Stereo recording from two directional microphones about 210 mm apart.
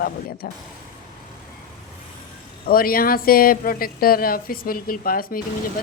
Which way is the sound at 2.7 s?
45° left (ahead or behind).